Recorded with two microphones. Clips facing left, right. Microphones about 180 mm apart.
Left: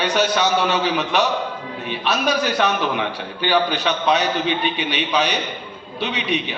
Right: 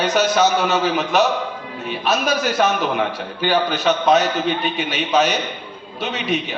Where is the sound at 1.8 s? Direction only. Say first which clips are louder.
Right 1 dB; 45° right (ahead or behind).